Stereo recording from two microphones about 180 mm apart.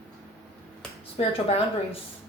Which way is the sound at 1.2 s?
35° left (ahead or behind).